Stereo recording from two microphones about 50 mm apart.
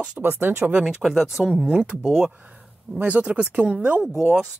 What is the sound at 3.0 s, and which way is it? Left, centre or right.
Speech, right.